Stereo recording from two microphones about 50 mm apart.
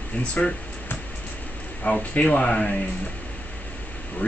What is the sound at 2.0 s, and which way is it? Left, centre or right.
Speech, left.